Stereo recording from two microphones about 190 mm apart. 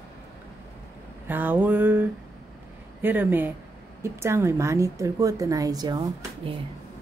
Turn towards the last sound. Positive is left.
turn(degrees=-20)  # may be behind; listen again after turning